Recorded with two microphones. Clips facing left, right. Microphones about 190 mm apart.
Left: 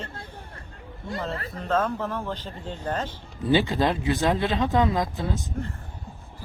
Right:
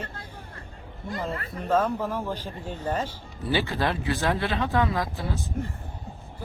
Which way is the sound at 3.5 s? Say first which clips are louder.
Left 4 dB; 20° left (ahead or behind).